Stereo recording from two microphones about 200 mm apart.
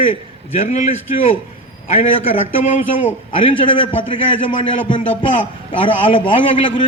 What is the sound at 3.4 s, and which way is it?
A man's voice, 25° left (ahead or behind).